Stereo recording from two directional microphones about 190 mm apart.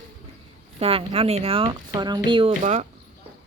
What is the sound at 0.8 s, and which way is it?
Speech, 30° right (ahead or behind).